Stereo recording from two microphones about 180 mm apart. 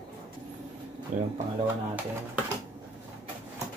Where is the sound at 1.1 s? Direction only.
45° right (ahead or behind).